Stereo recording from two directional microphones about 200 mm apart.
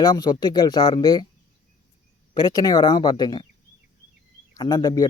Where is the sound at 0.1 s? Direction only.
20° left (ahead or behind).